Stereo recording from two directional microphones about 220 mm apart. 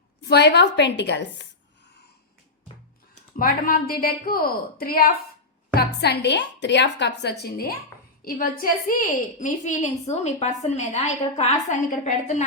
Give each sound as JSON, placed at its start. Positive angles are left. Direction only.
{"t": 0.2, "sound": "a woman's voice", "side_deg": 50}
{"t": 3.3, "sound": "a woman's voice", "side_deg": 40}